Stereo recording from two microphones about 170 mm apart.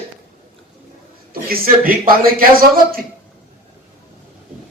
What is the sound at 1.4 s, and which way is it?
A man's voice, 60° right (ahead or behind).